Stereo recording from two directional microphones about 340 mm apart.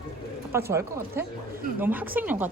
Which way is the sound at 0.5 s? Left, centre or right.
Centre.